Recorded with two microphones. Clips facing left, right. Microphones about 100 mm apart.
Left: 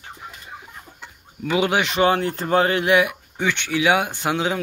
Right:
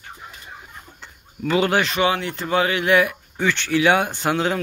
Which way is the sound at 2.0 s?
40° left (ahead or behind).